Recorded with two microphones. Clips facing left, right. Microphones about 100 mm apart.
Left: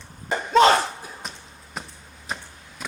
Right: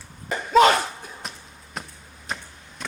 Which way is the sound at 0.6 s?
30° left (ahead or behind).